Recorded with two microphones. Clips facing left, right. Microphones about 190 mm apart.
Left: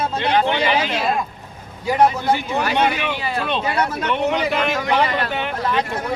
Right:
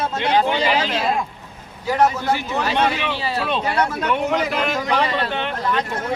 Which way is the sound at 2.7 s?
5° left (ahead or behind).